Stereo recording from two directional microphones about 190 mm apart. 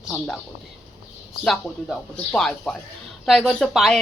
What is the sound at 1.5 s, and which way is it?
Speech, centre (ahead or behind).